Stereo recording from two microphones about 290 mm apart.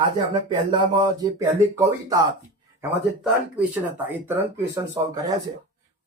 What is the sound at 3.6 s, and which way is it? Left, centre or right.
Speech, centre.